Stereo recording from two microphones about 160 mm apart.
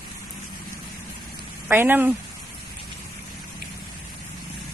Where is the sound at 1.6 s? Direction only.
15° right (ahead or behind).